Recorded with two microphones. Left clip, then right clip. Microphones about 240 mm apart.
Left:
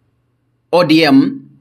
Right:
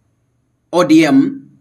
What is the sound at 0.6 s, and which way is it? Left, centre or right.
Speech, left.